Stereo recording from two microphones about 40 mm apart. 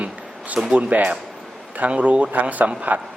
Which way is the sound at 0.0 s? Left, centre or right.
Right.